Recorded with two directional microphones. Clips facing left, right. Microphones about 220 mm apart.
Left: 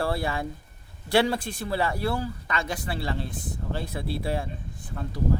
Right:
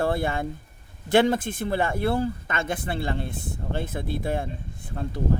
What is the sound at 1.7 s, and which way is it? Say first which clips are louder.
Speech: right 3 dB; 50° right (ahead or behind).